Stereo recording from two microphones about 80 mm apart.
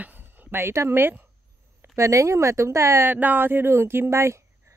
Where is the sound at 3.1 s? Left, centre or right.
Right.